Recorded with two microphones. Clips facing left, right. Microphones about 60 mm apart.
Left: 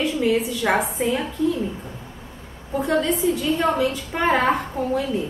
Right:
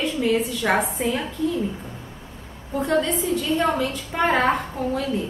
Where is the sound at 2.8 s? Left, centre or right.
Centre.